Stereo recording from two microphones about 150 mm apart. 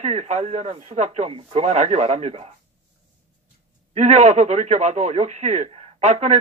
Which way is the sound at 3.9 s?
45° right (ahead or behind).